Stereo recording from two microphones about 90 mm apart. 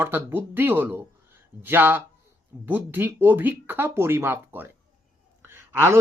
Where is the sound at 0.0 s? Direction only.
25° right (ahead or behind).